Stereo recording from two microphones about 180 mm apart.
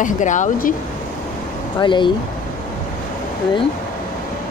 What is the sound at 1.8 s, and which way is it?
Speech, 25° left (ahead or behind).